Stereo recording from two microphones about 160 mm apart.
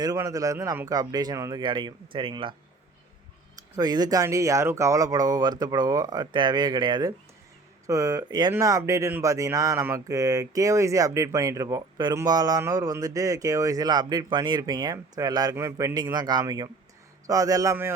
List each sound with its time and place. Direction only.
0.0 s speech: 25° right (ahead or behind)